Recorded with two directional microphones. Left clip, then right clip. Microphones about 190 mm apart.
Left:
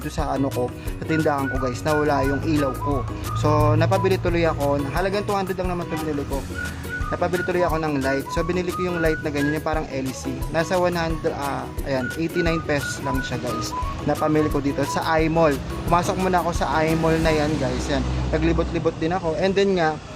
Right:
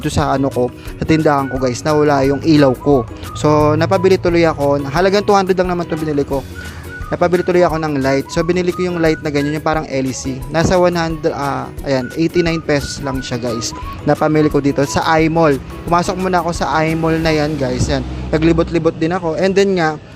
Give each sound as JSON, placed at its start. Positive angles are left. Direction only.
{"t": 0.2, "sound": "speech", "side_deg": -40}
{"t": 7.1, "sound": "speech", "side_deg": -35}